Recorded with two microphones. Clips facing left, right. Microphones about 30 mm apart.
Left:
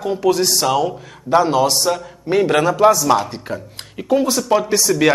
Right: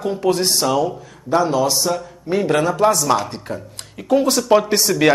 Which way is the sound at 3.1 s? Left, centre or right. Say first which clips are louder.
Left 2 dB; centre.